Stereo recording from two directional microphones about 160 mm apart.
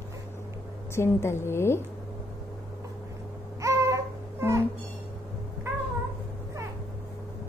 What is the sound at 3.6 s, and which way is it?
Music, 20° right (ahead or behind).